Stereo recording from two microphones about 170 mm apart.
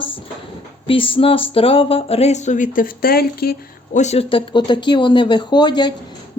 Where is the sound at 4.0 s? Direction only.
40° left (ahead or behind).